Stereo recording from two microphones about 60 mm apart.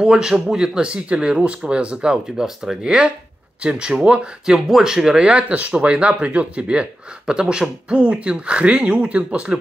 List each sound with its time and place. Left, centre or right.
0.0 s speech: centre